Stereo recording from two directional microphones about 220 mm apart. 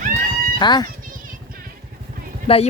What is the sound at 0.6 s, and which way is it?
Speech, 20° left (ahead or behind).